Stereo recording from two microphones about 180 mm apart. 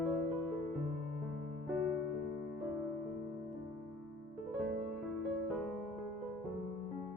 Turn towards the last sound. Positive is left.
turn(degrees=0)  # may be behind; listen again after turning